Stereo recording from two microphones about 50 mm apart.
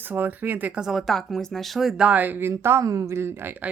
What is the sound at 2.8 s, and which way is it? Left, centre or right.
Speech, right.